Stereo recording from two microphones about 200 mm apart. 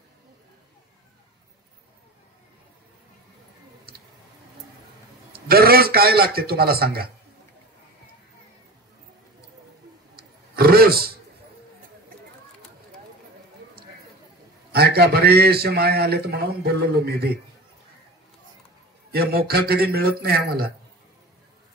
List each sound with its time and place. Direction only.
5.3 s a man's voice: 50° right (ahead or behind)
10.1 s roar: 50° right (ahead or behind)
14.7 s a man's voice: 50° right (ahead or behind)
19.1 s a man's voice: 50° right (ahead or behind)